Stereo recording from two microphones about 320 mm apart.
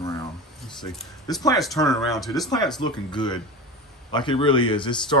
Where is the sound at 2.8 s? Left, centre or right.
Centre.